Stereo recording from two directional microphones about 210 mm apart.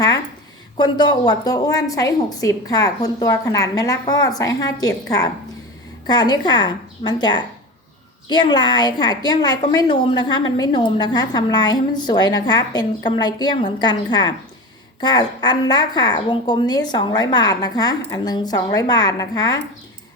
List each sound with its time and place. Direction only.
0.8 s a woman's voice: 20° left (ahead or behind)